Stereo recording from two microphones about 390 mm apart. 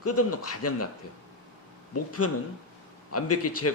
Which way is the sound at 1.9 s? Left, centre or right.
Left.